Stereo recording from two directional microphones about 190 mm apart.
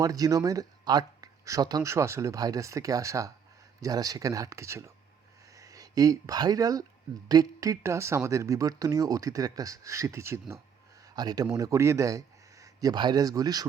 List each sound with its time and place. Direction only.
0.0 s speech: 20° right (ahead or behind)
11.0 s a sound: 20° right (ahead or behind)
11.5 s speech: 15° right (ahead or behind)